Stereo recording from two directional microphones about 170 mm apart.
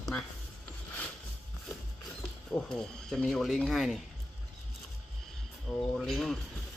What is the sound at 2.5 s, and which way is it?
Speech, 5° left (ahead or behind).